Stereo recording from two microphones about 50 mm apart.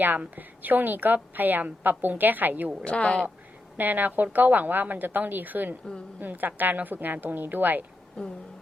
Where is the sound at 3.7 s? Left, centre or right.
Right.